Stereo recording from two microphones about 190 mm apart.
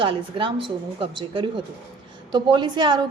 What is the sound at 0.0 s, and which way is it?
A woman's voice, 25° right (ahead or behind).